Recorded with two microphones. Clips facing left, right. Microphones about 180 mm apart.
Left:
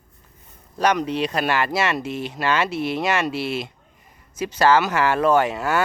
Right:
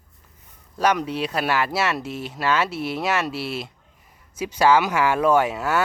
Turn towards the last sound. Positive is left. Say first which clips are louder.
# left 1 dB
turn(degrees=-5)  # may be behind; listen again after turning